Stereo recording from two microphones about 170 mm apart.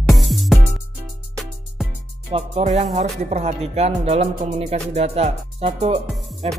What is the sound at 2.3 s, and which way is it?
Speech, 35° right (ahead or behind).